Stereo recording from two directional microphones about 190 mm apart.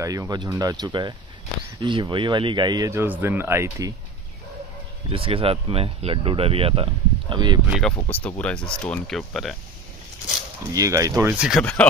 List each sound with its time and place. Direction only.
0.0 s speech: 20° right (ahead or behind)
5.1 s speech: 30° right (ahead or behind)
8.1 s speech: 10° left (ahead or behind)
10.7 s speech: 15° right (ahead or behind)
11.6 s speech: 10° left (ahead or behind)